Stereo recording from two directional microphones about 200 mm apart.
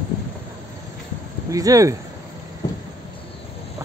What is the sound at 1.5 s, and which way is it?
Speech, 15° right (ahead or behind).